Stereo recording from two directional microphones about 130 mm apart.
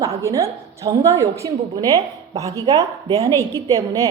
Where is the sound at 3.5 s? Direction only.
30° right (ahead or behind).